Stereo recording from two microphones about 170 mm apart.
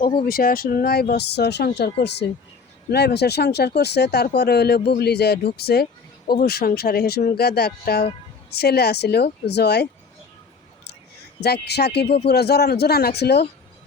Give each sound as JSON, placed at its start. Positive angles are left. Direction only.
{"t": 0.3, "sound": "speech", "side_deg": 55}
{"t": 11.3, "sound": "speech", "side_deg": 75}